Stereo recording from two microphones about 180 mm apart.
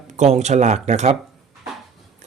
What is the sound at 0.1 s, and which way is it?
Speech, 40° right (ahead or behind).